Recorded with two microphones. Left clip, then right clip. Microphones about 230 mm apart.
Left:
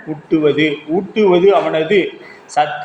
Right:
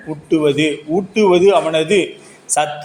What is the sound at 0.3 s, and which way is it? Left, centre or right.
A man's voice, right.